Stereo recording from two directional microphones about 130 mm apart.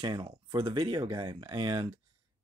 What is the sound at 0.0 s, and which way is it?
Speech, 35° right (ahead or behind).